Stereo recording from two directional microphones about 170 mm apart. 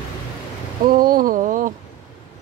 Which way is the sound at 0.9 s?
55° right (ahead or behind).